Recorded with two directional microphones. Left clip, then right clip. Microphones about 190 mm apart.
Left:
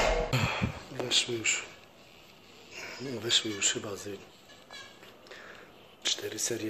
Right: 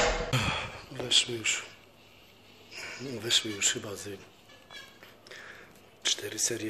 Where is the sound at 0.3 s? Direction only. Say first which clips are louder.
Right 1 dB; centre (ahead or behind).